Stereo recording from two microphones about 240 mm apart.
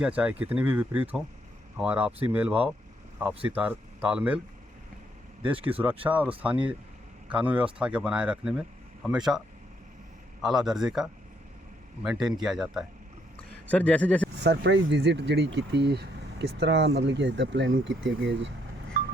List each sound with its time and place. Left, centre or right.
0.0 s speech: centre
5.7 s speech: centre
10.4 s speech: centre
14.4 s speech: right